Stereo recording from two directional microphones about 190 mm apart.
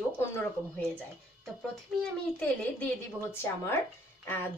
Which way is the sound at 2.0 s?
5° left (ahead or behind).